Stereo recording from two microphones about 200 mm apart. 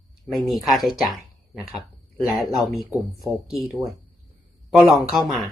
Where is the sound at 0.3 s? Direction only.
Centre (ahead or behind).